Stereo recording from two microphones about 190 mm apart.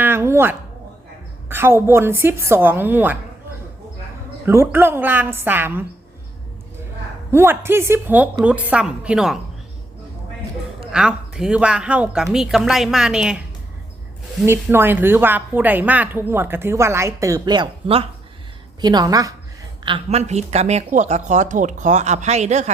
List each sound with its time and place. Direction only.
0.0 s a sound: 10° right (ahead or behind)
1.5 s a woman's voice: 10° right (ahead or behind)
4.4 s a woman's voice: 10° right (ahead or behind)
7.3 s a woman's voice: 10° right (ahead or behind)
10.9 s a woman's voice: 5° right (ahead or behind)
14.4 s a woman's voice: 10° right (ahead or behind)
19.8 s speech: 30° right (ahead or behind)